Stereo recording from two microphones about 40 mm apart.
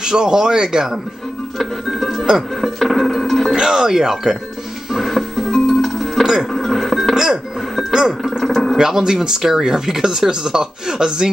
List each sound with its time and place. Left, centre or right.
0.0 s speech: centre
1.9 s music: centre
3.5 s speech: centre
4.9 s music: centre
8.2 s a sound: centre
8.7 s speech: centre